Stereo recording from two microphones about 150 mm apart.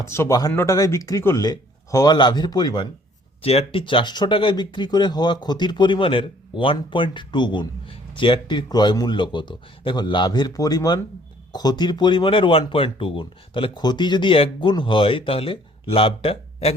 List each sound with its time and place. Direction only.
0.0 s speech: 20° left (ahead or behind)
3.4 s speech: 40° left (ahead or behind)